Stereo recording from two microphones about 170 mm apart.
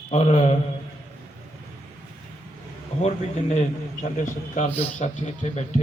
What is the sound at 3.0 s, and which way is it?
A man's voice, 40° left (ahead or behind).